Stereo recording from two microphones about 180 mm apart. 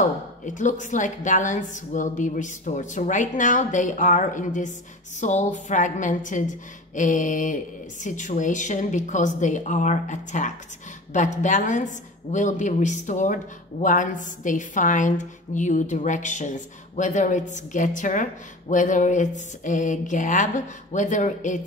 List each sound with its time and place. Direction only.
0.5 s a woman's voice: 45° left (ahead or behind)